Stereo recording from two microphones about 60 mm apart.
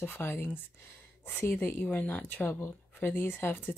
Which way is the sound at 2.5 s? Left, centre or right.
Left.